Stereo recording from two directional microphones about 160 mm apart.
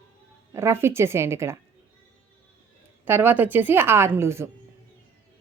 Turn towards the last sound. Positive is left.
turn(degrees=-15)  # may be behind; listen again after turning